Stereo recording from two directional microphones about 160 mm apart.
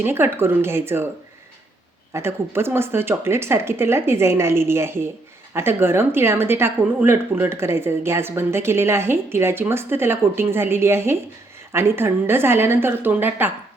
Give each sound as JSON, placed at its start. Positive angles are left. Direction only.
{"t": 0.0, "sound": "a woman's voice", "side_deg": -15}
{"t": 2.1, "sound": "a woman's voice", "side_deg": -15}